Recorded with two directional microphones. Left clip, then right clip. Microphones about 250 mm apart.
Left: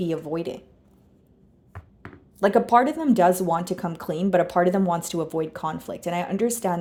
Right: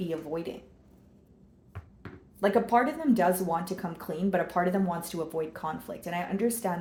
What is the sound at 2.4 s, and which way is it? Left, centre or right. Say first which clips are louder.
Speech: left 6 dB; left.